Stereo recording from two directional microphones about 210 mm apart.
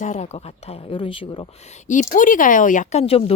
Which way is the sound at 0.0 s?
35° left (ahead or behind).